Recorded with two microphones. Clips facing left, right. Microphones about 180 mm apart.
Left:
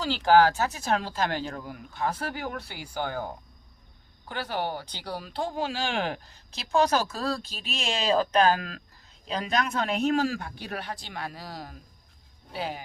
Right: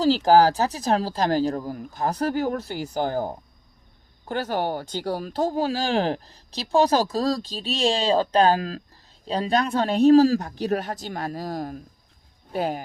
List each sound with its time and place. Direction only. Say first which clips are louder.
0.0 s speech: right 4 dB; 40° right (ahead or behind)